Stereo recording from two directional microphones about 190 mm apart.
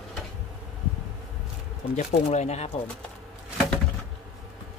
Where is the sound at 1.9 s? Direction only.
35° left (ahead or behind).